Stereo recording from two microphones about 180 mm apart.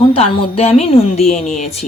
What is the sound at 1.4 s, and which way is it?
Speech, centre (ahead or behind).